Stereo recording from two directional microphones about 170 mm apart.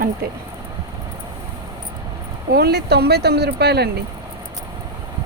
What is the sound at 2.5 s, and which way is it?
Speech, 70° right (ahead or behind).